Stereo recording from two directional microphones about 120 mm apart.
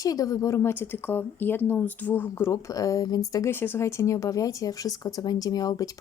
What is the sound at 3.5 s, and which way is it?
Speech, 15° left (ahead or behind).